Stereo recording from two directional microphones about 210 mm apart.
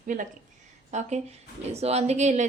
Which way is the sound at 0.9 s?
35° right (ahead or behind).